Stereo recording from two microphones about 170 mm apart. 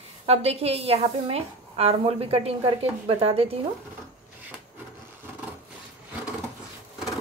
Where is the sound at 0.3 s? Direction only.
35° right (ahead or behind).